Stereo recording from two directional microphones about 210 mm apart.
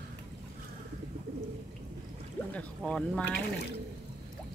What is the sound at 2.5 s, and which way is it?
Speech, 5° left (ahead or behind).